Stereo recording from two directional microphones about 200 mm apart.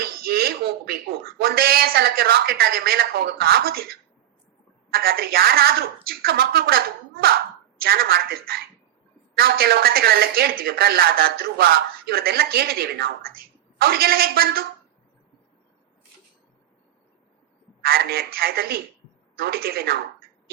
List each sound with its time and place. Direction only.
0.0 s a sound: 50° right (ahead or behind)
1.4 s a woman's voice: 50° right (ahead or behind)
4.9 s a woman's voice: 50° right (ahead or behind)
17.8 s a woman's voice: 50° right (ahead or behind)